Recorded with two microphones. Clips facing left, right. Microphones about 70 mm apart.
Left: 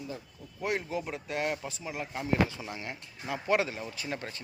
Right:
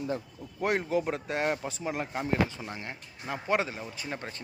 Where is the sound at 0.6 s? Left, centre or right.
Right.